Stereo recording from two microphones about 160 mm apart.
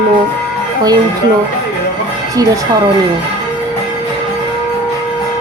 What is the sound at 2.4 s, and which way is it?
Music, 20° right (ahead or behind).